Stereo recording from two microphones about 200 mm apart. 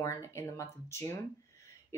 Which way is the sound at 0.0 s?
15° left (ahead or behind).